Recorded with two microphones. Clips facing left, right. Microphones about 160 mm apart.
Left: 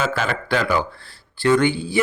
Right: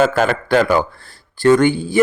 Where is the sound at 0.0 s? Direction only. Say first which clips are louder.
Right 8 dB; 50° right (ahead or behind).